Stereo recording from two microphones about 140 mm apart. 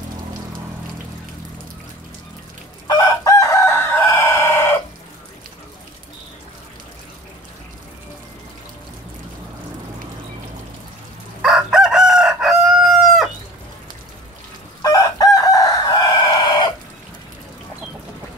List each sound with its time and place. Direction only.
2.9 s chicken: 25° left (ahead or behind)
11.4 s chicken: 5° right (ahead or behind)
14.8 s chicken: 25° left (ahead or behind)